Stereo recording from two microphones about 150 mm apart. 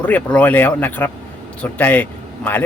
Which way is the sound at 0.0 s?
10° left (ahead or behind).